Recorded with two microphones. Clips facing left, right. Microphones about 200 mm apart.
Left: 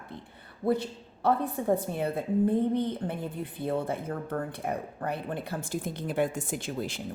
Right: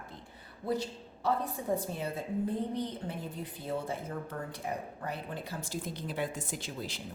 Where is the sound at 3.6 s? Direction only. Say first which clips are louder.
Left 6 dB; 60° left (ahead or behind).